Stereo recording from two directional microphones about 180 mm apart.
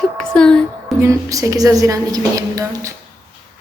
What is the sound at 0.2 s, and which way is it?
Speech, 5° left (ahead or behind).